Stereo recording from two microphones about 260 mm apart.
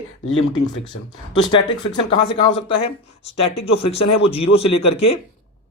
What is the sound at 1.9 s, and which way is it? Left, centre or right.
Speech, centre.